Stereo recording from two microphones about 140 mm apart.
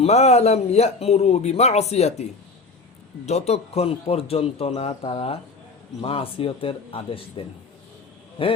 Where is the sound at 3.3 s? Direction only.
50° left (ahead or behind).